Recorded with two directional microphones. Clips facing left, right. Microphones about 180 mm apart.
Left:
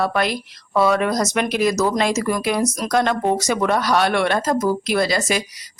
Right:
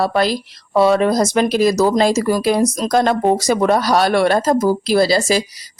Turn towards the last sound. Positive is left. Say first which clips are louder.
# right 5 dB
turn(degrees=-35)  # may be behind; listen again after turning